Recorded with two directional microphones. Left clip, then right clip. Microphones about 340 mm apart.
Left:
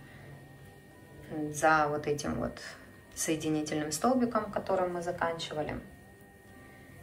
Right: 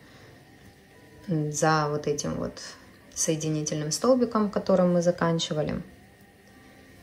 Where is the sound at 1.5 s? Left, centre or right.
Centre.